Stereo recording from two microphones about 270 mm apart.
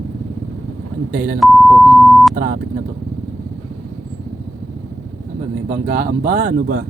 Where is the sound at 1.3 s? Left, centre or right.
Centre.